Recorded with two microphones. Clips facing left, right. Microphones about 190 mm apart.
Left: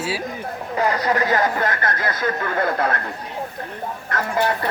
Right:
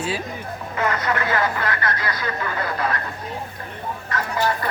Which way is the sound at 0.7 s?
35° left (ahead or behind).